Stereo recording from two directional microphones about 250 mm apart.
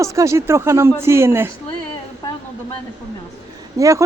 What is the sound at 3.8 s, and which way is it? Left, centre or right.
Speech, centre.